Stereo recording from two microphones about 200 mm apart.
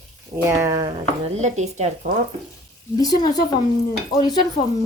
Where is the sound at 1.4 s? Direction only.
35° right (ahead or behind).